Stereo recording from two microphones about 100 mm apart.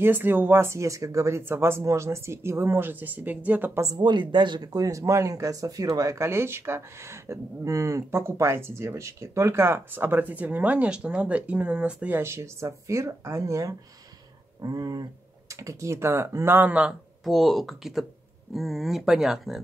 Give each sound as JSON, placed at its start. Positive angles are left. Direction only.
{"t": 0.0, "sound": "speech", "side_deg": -20}
{"t": 4.0, "sound": "speech", "side_deg": -50}
{"t": 12.2, "sound": "speech", "side_deg": -25}
{"t": 15.6, "sound": "speech", "side_deg": -30}
{"t": 17.2, "sound": "speech", "side_deg": 0}